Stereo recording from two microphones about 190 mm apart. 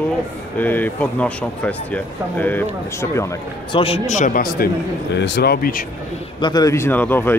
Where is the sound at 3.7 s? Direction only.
30° left (ahead or behind); by 5.8 s 55° left (ahead or behind).